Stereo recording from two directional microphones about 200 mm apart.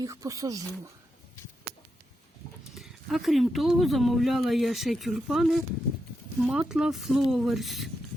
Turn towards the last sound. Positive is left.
turn(degrees=0)  # may be behind; listen again after turning